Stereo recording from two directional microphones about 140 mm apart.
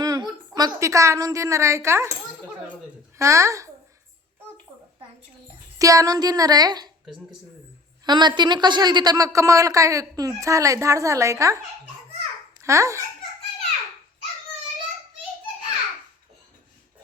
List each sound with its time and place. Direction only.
0.0 s a woman's voice: 30° right (ahead or behind)
3.2 s a woman's voice: 20° right (ahead or behind)
5.8 s a woman's voice: 25° right (ahead or behind)
8.0 s a woman's voice: 30° right (ahead or behind)
12.6 s a woman's voice: 20° right (ahead or behind)